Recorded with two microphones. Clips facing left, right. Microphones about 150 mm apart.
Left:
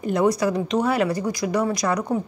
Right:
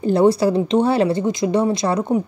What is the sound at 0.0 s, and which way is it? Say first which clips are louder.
Speech: right 5 dB; 30° right (ahead or behind).